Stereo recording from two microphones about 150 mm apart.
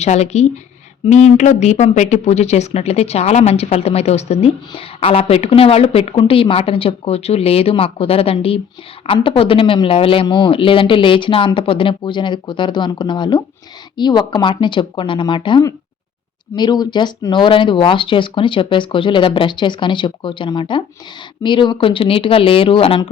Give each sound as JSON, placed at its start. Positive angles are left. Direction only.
{"t": 0.0, "sound": "speech", "side_deg": 45}